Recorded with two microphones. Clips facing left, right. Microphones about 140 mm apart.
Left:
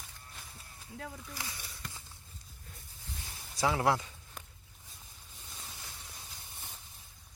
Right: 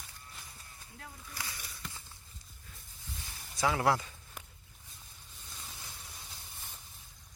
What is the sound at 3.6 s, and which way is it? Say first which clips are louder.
Speech: even; 20° left (ahead or behind).